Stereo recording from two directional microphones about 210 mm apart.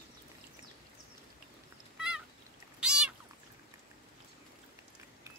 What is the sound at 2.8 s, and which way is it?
Cat, 5° right (ahead or behind).